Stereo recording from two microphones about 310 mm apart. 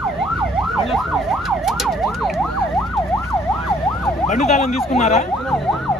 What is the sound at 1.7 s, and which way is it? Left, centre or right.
Emergency vehicle, centre.